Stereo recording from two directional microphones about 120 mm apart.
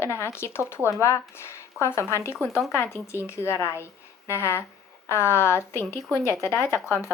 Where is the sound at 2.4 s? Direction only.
Centre (ahead or behind).